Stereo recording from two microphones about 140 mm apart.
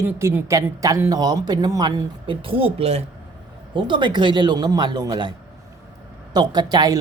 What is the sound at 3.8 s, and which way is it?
Speech, 35° right (ahead or behind).